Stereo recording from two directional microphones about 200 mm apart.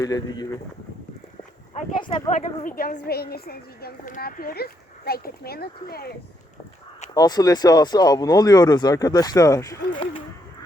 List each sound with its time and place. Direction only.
0.0 s speech: 15° left (ahead or behind)
2.0 s speech: 25° left (ahead or behind)
2.6 s a woman's voice: 45° left (ahead or behind)
7.1 s speech: 20° left (ahead or behind)